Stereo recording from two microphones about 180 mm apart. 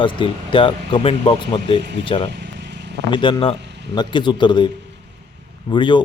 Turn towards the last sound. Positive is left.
turn(degrees=25)  # may be behind; listen again after turning